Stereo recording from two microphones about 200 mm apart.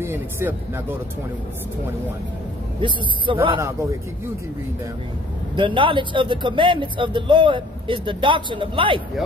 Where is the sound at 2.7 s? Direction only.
25° right (ahead or behind).